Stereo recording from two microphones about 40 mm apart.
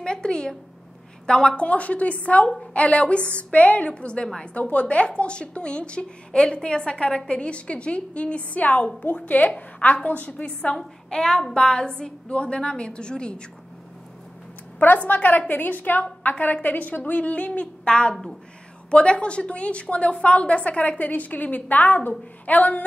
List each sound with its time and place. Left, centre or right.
0.0 s a woman's voice: left
1.6 s a woman's voice: left
10.4 s a woman's voice: left
15.0 s a woman's voice: left
17.5 s a woman's voice: left